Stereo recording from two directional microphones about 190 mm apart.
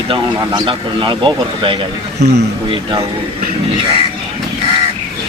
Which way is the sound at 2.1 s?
60° right (ahead or behind).